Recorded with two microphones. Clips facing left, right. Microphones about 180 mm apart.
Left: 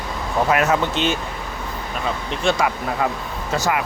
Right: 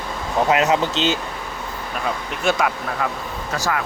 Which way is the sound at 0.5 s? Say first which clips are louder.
Right 1 dB; 20° right (ahead or behind).